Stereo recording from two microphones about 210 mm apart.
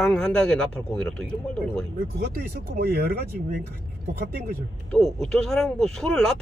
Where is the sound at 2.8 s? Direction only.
50° right (ahead or behind).